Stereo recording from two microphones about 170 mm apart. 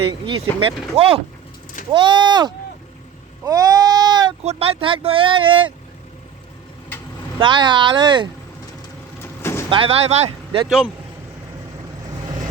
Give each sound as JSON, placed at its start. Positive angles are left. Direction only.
{"t": 0.1, "sound": "speech", "side_deg": -25}
{"t": 1.9, "sound": "speech", "side_deg": -30}
{"t": 3.4, "sound": "a sound", "side_deg": -20}
{"t": 4.4, "sound": "speech", "side_deg": -35}
{"t": 7.3, "sound": "speech", "side_deg": -30}
{"t": 9.4, "sound": "vehicle", "side_deg": 15}
{"t": 9.6, "sound": "speech", "side_deg": -30}
{"t": 10.7, "sound": "speech", "side_deg": 0}